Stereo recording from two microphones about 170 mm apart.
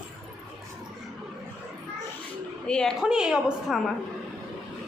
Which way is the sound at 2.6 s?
5° left (ahead or behind).